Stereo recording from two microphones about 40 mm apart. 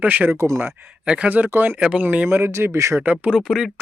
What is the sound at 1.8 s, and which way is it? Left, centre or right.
Speech, right.